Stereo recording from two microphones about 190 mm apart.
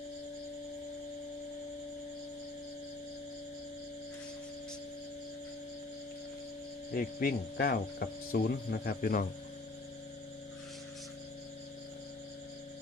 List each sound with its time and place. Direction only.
6.9 s speech: 50° left (ahead or behind)